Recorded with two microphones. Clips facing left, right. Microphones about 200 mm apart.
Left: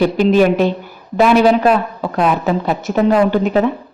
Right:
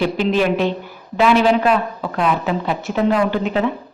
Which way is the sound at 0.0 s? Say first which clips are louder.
Left 6 dB; 45° left (ahead or behind).